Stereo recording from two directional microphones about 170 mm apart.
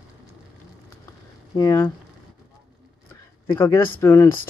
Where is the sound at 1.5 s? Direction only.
20° left (ahead or behind).